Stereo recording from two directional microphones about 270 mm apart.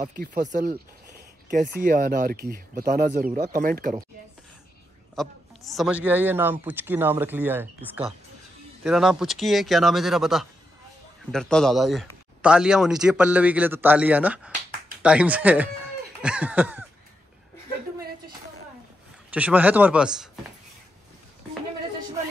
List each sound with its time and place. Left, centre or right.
0.2 s speech: right
1.8 s speech: right
5.1 s a man's voice: centre
8.8 s speech: centre
19.3 s speech: centre